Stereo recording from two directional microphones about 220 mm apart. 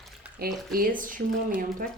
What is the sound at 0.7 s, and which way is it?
Speech, 40° right (ahead or behind).